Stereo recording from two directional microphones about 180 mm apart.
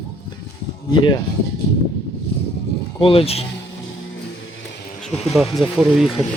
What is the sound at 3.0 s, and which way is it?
Speech, 30° left (ahead or behind).